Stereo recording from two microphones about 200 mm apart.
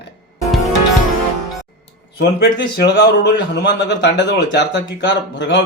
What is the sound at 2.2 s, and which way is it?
A man's voice, 55° left (ahead or behind).